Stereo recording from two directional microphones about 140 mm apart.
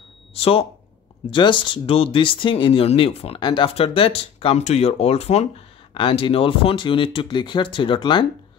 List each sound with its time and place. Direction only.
0.3 s speech: 40° left (ahead or behind)
3.3 s speech: 35° left (ahead or behind); by 5.5 s 50° left (ahead or behind)
5.9 s speech: 40° left (ahead or behind)